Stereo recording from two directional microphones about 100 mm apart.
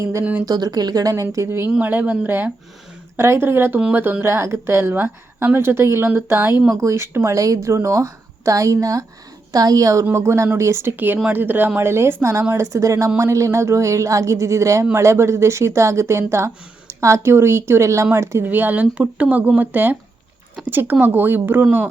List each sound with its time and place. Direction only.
0.0 s a woman's voice: 30° right (ahead or behind)
0.4 s a woman's voice: 45° right (ahead or behind); by 21.8 s 20° right (ahead or behind)